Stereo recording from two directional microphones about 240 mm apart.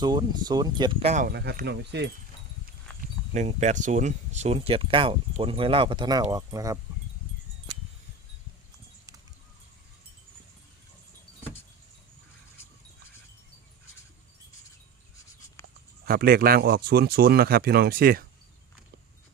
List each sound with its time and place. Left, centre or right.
0.0 s speech: centre; by 2.0 s right
3.3 s speech: right
16.0 s speech: right